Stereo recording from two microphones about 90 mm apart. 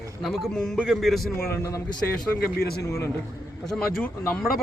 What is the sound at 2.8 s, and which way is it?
Speech, 35° left (ahead or behind).